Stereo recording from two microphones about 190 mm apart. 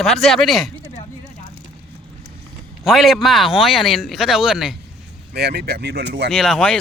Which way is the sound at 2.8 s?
Centre (ahead or behind).